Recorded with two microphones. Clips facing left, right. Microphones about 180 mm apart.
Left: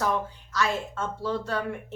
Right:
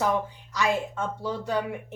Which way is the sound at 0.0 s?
15° right (ahead or behind).